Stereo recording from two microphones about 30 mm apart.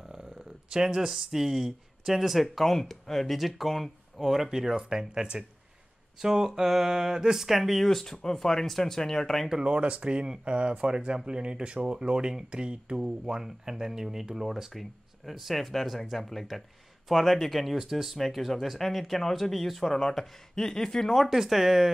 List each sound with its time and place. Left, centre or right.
0.1 s speech: right; by 2.4 s centre
2.5 s speech: centre
3.3 s speech: centre
7.8 s speech: centre
9.6 s speech: right
10.0 s speech: right
13.0 s speech: right
14.7 s speech: centre
17.7 s speech: centre
19.8 s speech: centre
21.4 s speech: centre